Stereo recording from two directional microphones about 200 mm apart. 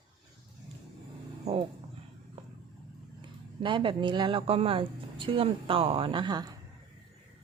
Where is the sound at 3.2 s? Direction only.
25° right (ahead or behind).